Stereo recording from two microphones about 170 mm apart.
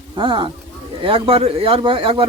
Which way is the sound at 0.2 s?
30° right (ahead or behind).